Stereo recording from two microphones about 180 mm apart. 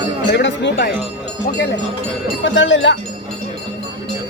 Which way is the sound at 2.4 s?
90° left.